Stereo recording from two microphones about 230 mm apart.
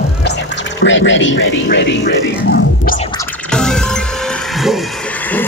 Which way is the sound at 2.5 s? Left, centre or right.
Left.